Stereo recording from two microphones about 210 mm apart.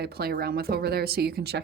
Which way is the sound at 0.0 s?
50° right (ahead or behind).